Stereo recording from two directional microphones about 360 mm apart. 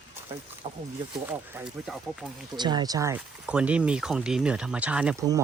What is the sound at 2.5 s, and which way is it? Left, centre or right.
Speech, centre.